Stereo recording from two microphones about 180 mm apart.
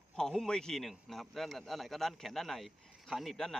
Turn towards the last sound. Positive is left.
turn(degrees=0)  # may be behind; listen again after turning